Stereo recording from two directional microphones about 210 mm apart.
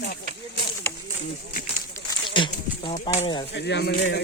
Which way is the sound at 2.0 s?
20° left (ahead or behind).